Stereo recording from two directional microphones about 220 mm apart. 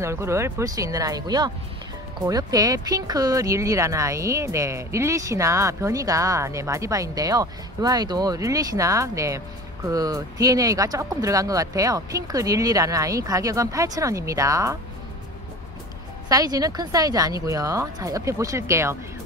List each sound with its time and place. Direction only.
0.0 s speech: 10° right (ahead or behind)
16.3 s speech: 15° right (ahead or behind)